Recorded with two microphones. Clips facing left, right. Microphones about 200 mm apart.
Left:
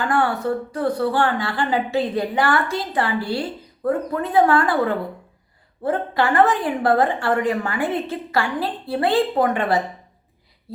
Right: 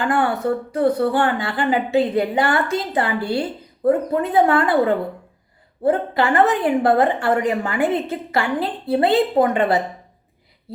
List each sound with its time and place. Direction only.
0.1 s a woman's voice: 20° right (ahead or behind)